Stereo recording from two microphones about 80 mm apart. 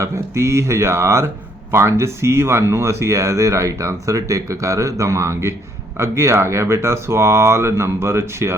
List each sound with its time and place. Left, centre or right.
0.0 s speech: right